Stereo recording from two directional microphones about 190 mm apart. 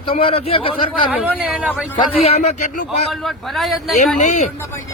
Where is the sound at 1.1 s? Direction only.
5° right (ahead or behind).